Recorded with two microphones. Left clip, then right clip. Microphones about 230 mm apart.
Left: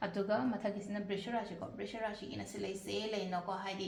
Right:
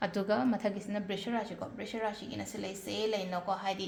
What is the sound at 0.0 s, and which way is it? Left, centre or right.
A woman's voice, right.